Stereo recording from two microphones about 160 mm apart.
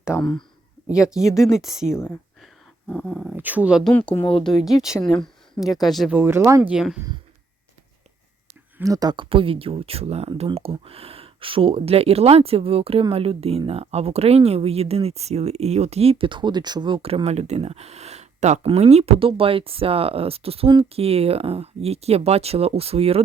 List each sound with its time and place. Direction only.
0.1 s speech: 20° left (ahead or behind)
1.5 s speech: 5° right (ahead or behind)
1.9 s speech: 15° left (ahead or behind)
2.9 s speech: 5° left (ahead or behind)
3.3 s speech: 10° right (ahead or behind)
4.1 s speech: 35° left (ahead or behind)
4.4 s speech: centre (ahead or behind)
6.1 s speech: 15° right (ahead or behind)
8.8 s speech: 25° right (ahead or behind); by 23.2 s 40° right (ahead or behind)